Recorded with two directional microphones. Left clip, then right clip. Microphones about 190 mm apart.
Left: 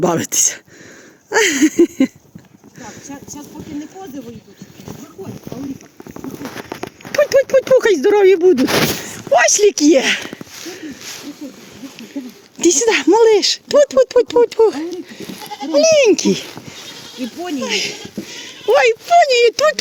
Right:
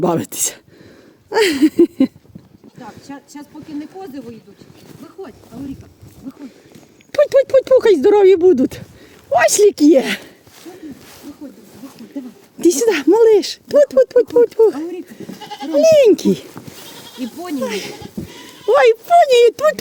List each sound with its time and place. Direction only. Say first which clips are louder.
0.0 s speech: left 2 dB; 5° right (ahead or behind)
7.1 s speech: even; 5° left (ahead or behind)
12.5 s speech: left 1 dB; 25° right (ahead or behind)
17.7 s speech: left 5 dB; 45° right (ahead or behind); by 19.8 s 25° right (ahead or behind)